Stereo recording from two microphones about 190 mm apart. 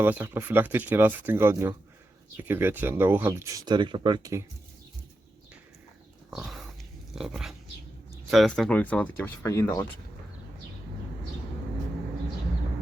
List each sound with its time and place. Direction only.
0.0 s speech: 10° right (ahead or behind)
6.3 s dog: centre (ahead or behind)
8.3 s speech: centre (ahead or behind)